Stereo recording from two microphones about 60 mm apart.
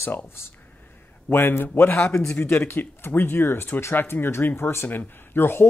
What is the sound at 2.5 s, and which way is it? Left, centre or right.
Speech, left.